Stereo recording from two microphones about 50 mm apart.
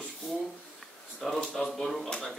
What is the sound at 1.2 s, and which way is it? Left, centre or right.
A man's voice, centre.